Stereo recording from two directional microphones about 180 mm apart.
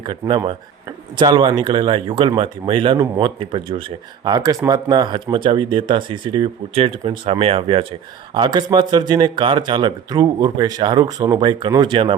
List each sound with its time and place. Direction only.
0.0 s speech: 25° right (ahead or behind)